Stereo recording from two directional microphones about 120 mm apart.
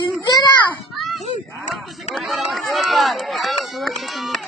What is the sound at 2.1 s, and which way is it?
Run, centre (ahead or behind).